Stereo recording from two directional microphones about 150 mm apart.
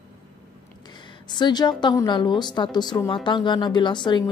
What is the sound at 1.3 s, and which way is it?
A woman's voice, 30° left (ahead or behind).